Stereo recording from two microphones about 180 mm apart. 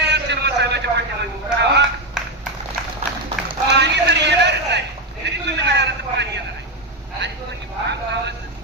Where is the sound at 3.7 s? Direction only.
70° right (ahead or behind).